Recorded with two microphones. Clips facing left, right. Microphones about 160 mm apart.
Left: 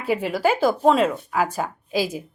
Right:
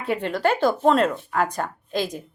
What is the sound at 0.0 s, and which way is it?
A woman's voice, 5° left (ahead or behind).